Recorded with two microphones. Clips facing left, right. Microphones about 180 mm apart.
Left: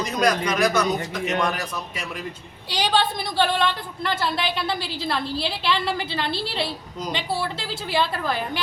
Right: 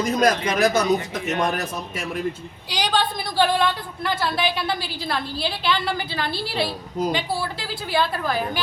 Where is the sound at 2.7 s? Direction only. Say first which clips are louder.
Left 1 dB; centre (ahead or behind).